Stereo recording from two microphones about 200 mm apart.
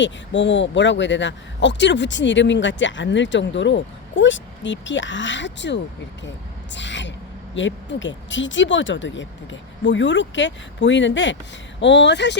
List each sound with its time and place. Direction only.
0.0 s speech: 65° left (ahead or behind)